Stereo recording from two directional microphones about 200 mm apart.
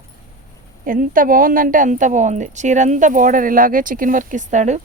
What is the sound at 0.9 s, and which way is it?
Speech, 45° right (ahead or behind).